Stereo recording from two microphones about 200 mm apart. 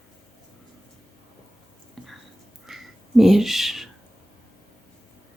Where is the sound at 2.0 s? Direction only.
Centre (ahead or behind).